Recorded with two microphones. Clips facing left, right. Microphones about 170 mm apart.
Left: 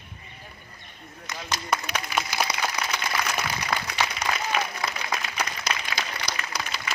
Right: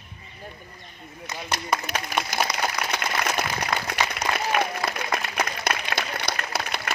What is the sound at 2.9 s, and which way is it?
Applause, 60° right (ahead or behind).